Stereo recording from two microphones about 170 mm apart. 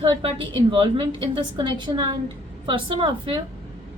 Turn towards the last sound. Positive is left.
turn(degrees=-30)  # may be behind; listen again after turning